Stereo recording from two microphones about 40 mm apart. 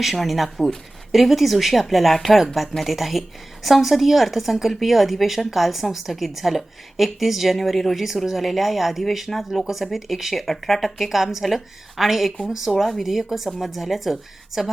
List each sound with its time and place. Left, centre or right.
0.0 s a woman's voice: centre